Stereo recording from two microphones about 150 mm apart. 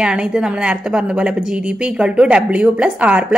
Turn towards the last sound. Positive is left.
turn(degrees=-10)  # may be behind; listen again after turning